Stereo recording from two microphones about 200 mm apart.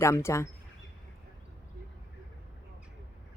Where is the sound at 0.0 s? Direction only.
15° left (ahead or behind).